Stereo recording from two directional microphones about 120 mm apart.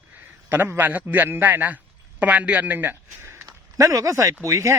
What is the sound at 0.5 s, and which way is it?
A man's voice, 15° right (ahead or behind).